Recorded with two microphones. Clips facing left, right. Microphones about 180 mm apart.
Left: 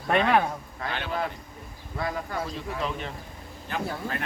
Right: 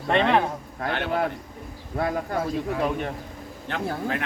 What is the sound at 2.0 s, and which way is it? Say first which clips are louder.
Speech: right 5 dB; 50° right (ahead or behind).